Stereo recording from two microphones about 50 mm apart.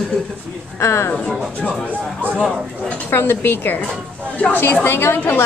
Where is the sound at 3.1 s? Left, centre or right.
Left.